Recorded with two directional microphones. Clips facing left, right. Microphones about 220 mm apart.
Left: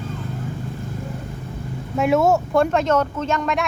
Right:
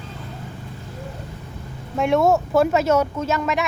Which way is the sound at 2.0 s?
Centre (ahead or behind).